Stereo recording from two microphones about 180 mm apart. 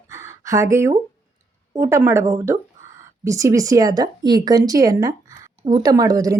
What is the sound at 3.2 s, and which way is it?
Speech, 15° right (ahead or behind).